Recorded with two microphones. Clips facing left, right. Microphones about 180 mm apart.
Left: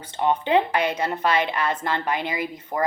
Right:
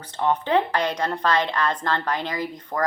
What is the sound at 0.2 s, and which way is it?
A woman's voice, 15° left (ahead or behind).